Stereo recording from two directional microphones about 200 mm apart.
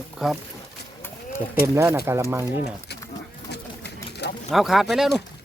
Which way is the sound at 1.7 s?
15° right (ahead or behind).